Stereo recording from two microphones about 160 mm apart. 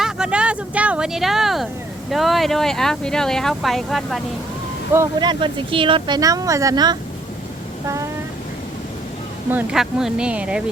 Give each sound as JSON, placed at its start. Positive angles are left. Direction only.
{"t": 0.0, "sound": "speech", "side_deg": -5}
{"t": 5.2, "sound": "speech", "side_deg": -30}
{"t": 9.5, "sound": "speech", "side_deg": -10}